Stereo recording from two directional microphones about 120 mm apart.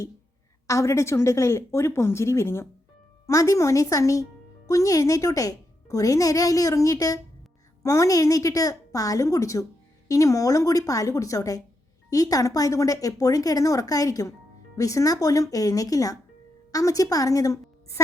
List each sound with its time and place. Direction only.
0.7 s a woman's voice: 25° left (ahead or behind)